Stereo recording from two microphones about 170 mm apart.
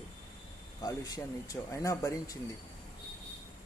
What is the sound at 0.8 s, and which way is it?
A man's voice, 20° left (ahead or behind).